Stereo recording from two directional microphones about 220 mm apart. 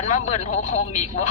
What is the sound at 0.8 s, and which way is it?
Speech, 30° left (ahead or behind).